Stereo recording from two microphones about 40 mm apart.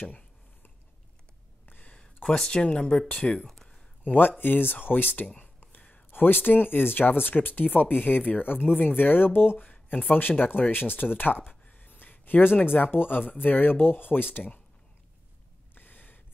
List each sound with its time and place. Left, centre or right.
2.2 s speech: centre
2.5 s speech: left
4.4 s speech: left
5.4 s whispering: left
6.1 s speech: left
9.9 s speech: left
11.6 s a sound: left
12.9 s speech: left
14.3 s speech: left
15.7 s a sound: left